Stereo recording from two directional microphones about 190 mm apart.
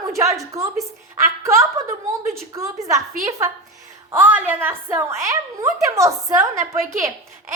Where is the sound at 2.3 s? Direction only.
15° right (ahead or behind).